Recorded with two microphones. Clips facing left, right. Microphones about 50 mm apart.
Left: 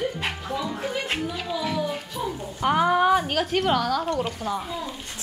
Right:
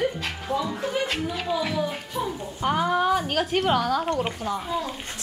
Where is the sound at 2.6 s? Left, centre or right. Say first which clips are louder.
Left 3 dB; centre.